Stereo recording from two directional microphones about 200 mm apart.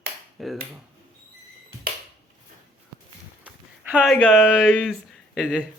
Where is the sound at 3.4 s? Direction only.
5° right (ahead or behind).